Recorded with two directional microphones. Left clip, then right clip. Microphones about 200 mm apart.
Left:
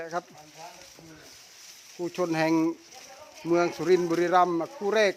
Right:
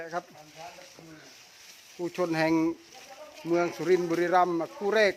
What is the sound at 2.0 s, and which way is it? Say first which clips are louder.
Speech: left 1 dB; 10° left (ahead or behind).